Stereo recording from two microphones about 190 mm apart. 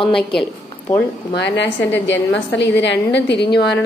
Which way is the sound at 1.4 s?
65° left (ahead or behind).